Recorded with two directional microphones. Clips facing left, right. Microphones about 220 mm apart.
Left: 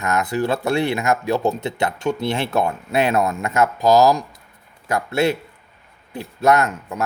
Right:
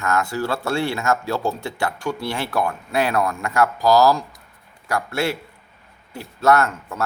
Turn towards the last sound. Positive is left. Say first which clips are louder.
# even
turn(degrees=15)  # may be behind; listen again after turning